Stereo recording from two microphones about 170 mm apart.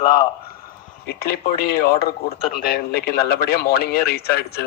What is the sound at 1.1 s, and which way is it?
A man's voice, 65° left (ahead or behind).